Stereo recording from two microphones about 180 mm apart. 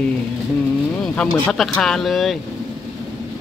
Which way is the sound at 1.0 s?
5° left (ahead or behind).